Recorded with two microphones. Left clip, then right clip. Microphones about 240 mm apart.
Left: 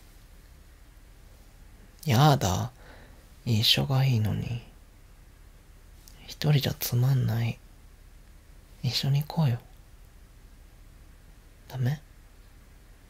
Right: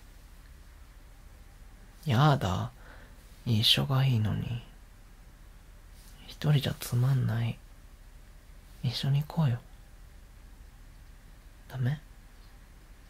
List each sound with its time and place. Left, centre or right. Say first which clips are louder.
2.0 s speech: left 4 dB; centre
6.2 s speech: left 3 dB; centre
8.8 s speech: left 4 dB; centre
11.6 s speech: left 3 dB; centre